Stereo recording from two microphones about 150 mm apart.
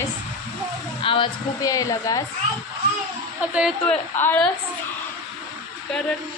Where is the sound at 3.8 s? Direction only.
10° left (ahead or behind).